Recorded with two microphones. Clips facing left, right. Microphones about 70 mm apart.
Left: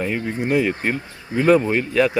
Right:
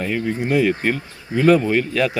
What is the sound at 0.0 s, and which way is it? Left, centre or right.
Speech, centre.